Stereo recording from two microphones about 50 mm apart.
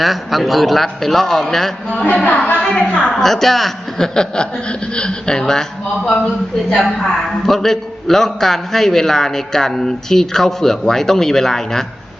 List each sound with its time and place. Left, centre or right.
0.0 s a man's voice: centre
2.0 s a woman's voice: left
3.1 s a man's voice: centre
7.4 s a man's voice: centre